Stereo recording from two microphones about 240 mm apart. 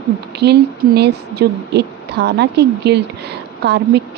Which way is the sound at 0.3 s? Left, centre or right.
Right.